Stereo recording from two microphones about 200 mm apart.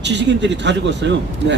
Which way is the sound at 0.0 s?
60° right (ahead or behind).